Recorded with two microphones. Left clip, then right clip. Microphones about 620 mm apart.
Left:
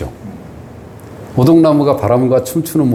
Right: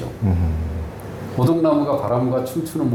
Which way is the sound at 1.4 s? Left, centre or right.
Left.